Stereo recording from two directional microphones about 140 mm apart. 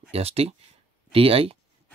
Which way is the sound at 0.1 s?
45° right (ahead or behind).